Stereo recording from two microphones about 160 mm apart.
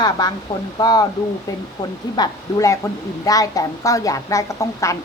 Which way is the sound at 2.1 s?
25° left (ahead or behind).